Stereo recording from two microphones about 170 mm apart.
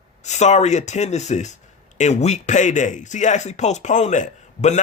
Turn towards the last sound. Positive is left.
turn(degrees=45)  # may be behind; listen again after turning